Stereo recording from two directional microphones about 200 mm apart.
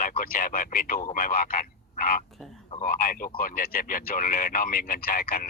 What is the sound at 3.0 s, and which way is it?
Speech, 45° left (ahead or behind).